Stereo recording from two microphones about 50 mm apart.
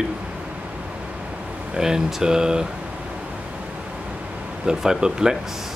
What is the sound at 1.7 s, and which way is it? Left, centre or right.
Speech, centre.